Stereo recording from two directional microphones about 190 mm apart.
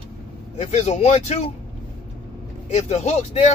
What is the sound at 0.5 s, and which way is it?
Speech, 35° left (ahead or behind).